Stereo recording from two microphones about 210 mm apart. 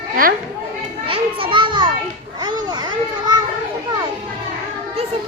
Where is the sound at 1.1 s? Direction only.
25° right (ahead or behind).